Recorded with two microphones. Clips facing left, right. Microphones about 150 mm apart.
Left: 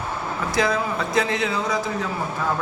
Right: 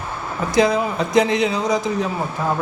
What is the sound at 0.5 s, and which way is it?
A man's voice, 20° right (ahead or behind).